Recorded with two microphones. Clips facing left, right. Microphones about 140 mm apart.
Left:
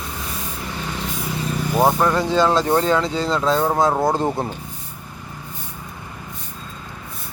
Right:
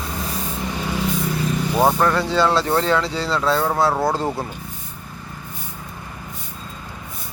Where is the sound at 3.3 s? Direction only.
20° left (ahead or behind).